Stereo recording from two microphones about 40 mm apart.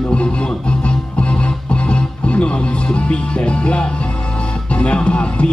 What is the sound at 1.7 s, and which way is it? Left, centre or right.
Music, left.